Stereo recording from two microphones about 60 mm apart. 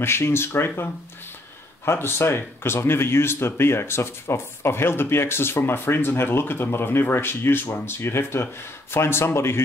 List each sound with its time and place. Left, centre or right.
0.0 s speech: left
1.9 s speech: left